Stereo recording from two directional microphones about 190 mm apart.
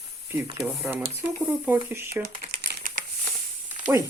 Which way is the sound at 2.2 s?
45° right (ahead or behind).